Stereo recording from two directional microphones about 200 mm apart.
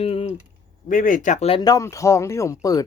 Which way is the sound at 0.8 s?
40° left (ahead or behind).